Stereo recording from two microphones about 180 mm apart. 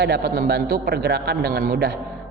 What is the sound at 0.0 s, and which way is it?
A man's voice, 65° right (ahead or behind).